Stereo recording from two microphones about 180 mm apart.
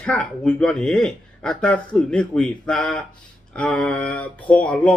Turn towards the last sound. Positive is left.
turn(degrees=5)  # may be behind; listen again after turning